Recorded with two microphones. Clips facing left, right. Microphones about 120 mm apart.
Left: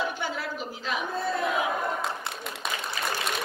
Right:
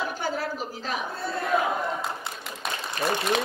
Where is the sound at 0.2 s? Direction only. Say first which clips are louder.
Right 3 dB; 40° right (ahead or behind).